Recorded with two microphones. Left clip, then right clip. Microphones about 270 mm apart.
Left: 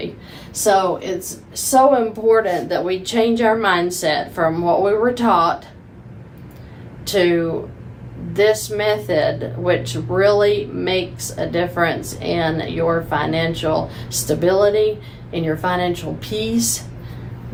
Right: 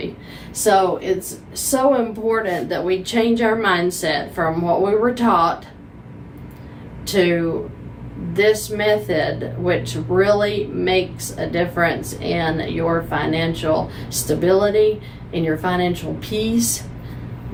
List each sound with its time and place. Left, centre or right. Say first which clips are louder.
1.7 s a woman's voice: left 4 dB; centre
7.0 s a woman's voice: left 1 dB; centre